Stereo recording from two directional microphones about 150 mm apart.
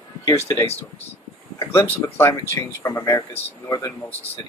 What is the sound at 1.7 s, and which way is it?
Speech, 15° left (ahead or behind).